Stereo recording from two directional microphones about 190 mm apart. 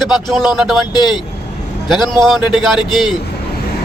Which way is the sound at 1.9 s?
Centre (ahead or behind).